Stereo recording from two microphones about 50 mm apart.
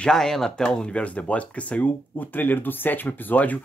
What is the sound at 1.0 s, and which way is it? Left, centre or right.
Speech, left.